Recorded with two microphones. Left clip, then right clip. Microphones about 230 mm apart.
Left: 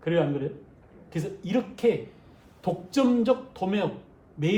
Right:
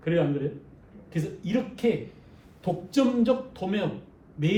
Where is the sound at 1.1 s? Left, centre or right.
Left.